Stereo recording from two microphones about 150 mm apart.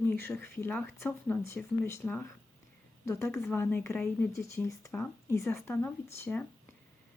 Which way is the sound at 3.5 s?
10° left (ahead or behind).